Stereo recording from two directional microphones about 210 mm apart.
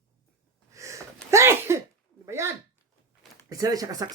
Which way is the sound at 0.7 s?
15° right (ahead or behind).